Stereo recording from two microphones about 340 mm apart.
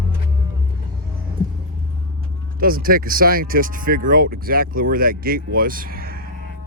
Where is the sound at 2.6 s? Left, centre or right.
Right.